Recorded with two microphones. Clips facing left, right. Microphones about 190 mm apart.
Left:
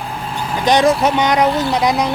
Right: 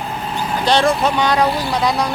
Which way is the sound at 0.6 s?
15° left (ahead or behind).